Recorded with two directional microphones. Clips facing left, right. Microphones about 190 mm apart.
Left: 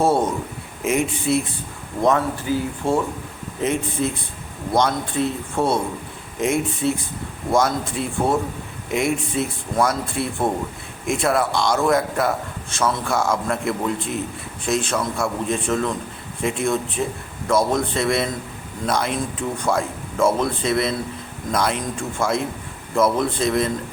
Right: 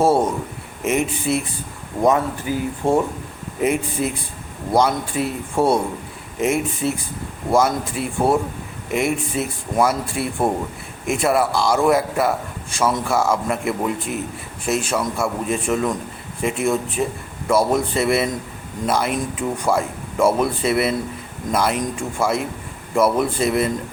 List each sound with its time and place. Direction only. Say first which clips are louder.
0.0 s a man's voice: right 2 dB; 10° right (ahead or behind)
2.0 s a man's voice: right 1 dB; 15° right (ahead or behind)